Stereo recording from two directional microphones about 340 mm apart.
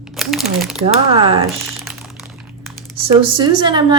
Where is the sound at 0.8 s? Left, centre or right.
Centre.